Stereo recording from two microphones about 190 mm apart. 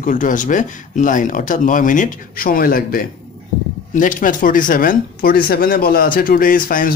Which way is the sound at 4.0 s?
45° left (ahead or behind).